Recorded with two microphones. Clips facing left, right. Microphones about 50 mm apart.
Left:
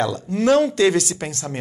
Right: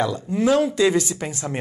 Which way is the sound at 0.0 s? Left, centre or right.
Centre.